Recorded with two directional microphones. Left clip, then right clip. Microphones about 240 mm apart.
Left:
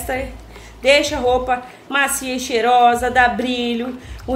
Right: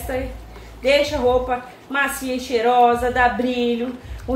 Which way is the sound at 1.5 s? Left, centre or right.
Left.